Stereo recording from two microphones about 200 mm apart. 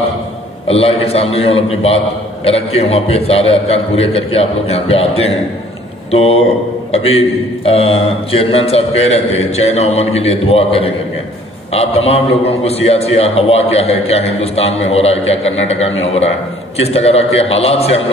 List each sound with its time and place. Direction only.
0.7 s a man's voice: 30° left (ahead or behind)